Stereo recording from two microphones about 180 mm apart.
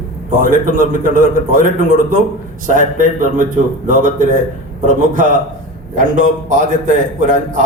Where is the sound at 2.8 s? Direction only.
45° right (ahead or behind).